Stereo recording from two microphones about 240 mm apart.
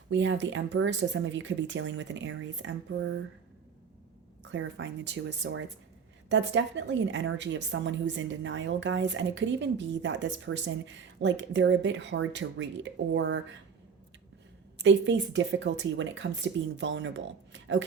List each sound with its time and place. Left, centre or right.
0.1 s a woman's voice: right
4.5 s a woman's voice: right
14.8 s a woman's voice: right